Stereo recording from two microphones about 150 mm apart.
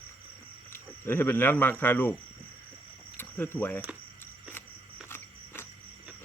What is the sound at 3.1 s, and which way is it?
Speech, 15° left (ahead or behind).